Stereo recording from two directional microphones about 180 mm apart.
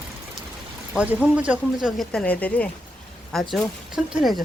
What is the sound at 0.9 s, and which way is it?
Speech, 5° right (ahead or behind).